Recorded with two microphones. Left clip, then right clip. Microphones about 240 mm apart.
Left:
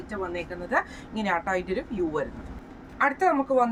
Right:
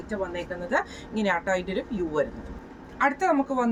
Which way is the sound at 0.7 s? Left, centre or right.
Centre.